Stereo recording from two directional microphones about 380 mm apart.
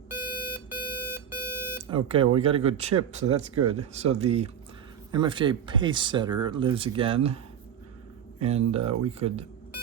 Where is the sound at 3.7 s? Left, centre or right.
Centre.